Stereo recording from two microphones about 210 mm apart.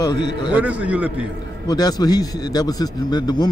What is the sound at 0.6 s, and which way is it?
Speech, 5° right (ahead or behind).